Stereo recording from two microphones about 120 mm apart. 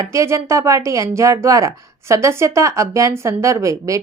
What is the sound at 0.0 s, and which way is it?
Speech, 25° right (ahead or behind).